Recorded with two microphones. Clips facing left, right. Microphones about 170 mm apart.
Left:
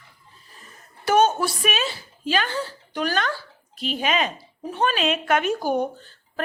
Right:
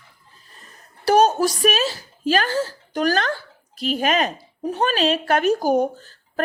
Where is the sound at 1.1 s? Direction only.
35° right (ahead or behind).